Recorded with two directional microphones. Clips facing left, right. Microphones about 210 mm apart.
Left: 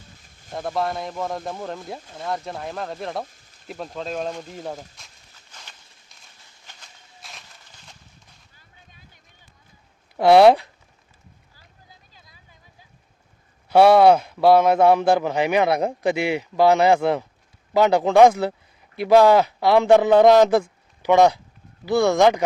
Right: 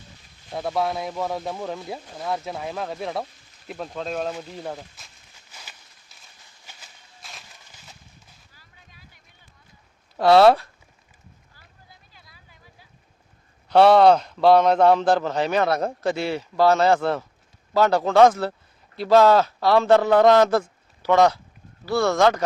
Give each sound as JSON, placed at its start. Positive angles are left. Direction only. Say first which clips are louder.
{"t": 0.5, "sound": "speech", "louder": "right 1 dB", "side_deg": 0}
{"t": 4.9, "sound": "walk", "louder": "even", "side_deg": -5}
{"t": 6.7, "sound": "a sound", "louder": "even", "side_deg": -5}
{"t": 10.2, "sound": "a man's voice", "louder": "left 2 dB", "side_deg": 15}
{"t": 13.7, "sound": "a man's voice", "louder": "left 1 dB", "side_deg": 10}